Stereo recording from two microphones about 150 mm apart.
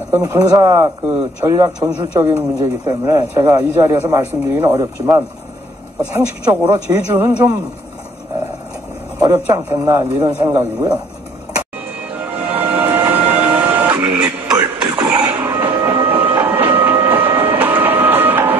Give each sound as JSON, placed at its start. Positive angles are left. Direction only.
{"t": 0.1, "sound": "a man's voice", "side_deg": -20}
{"t": 6.5, "sound": "a man's voice", "side_deg": -15}
{"t": 9.2, "sound": "a man's voice", "side_deg": -25}
{"t": 12.2, "sound": "printer", "side_deg": -10}
{"t": 15.0, "sound": "train", "side_deg": -10}